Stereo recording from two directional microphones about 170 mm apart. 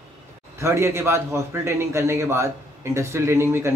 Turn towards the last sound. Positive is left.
turn(degrees=-15)  # may be behind; listen again after turning